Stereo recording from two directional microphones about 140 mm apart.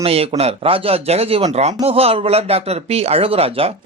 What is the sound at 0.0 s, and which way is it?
Speech, 45° right (ahead or behind).